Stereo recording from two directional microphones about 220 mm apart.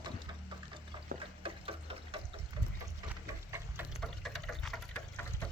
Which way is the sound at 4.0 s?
Centre (ahead or behind).